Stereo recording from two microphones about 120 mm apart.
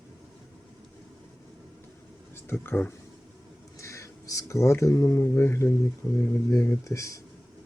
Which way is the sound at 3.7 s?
25° left (ahead or behind).